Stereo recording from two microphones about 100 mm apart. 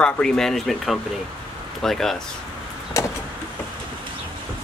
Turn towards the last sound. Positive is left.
turn(degrees=35)  # may be behind; listen again after turning